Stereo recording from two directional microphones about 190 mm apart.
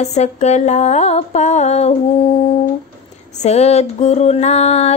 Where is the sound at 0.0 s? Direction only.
35° left (ahead or behind).